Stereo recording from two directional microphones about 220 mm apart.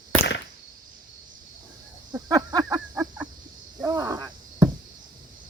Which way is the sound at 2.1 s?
15° right (ahead or behind).